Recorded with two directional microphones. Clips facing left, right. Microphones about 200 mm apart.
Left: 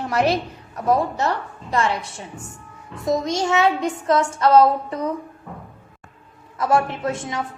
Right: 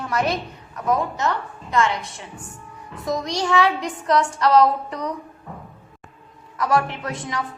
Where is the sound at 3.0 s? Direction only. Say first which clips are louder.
Left 3 dB; 25° left (ahead or behind).